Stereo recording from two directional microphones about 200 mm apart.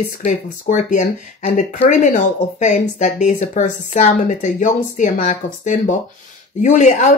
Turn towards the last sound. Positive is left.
turn(degrees=40)  # may be behind; listen again after turning